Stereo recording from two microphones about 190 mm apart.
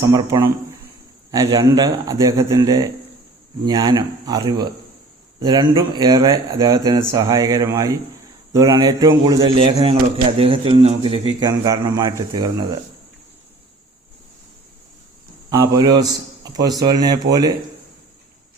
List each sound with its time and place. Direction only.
0.1 s a man's voice: 20° right (ahead or behind)
9.6 s a man's voice: 30° right (ahead or behind)
11.3 s a man's voice: 20° right (ahead or behind)
15.4 s a man's voice: 20° right (ahead or behind)